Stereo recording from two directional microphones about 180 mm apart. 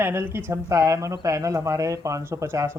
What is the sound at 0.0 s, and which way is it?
Speech, 15° right (ahead or behind).